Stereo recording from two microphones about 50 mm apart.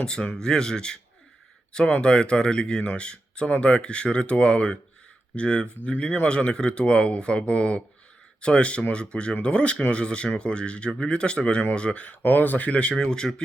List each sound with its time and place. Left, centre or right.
0.0 s speech: centre
12.2 s speech: left
12.9 s speech: centre